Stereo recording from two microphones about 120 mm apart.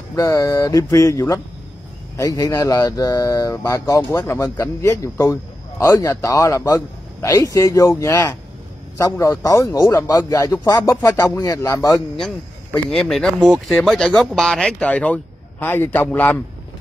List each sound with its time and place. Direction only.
0.1 s speech: 25° left (ahead or behind)
12.9 s a man's voice: 5° left (ahead or behind)